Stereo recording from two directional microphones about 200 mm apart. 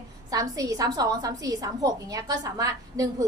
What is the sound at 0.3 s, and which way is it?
A woman's voice, 15° right (ahead or behind).